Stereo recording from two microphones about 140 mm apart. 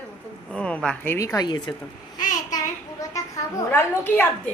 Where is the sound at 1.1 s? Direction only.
25° left (ahead or behind).